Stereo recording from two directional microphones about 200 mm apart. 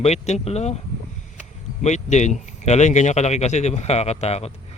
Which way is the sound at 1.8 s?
35° left (ahead or behind).